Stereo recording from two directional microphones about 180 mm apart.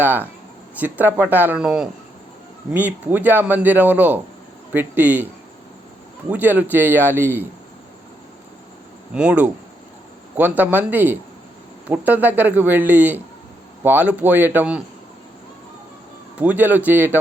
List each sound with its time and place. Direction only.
0.0 s a man's voice: 10° right (ahead or behind)
9.1 s a man's voice: 5° right (ahead or behind)
16.4 s a man's voice: 10° right (ahead or behind)